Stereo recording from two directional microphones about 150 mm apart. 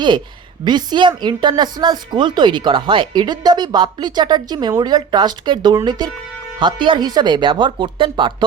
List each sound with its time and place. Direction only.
0.6 s speech: 30° right (ahead or behind)